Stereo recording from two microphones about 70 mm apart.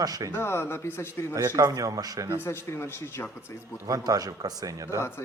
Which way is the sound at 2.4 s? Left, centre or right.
Left.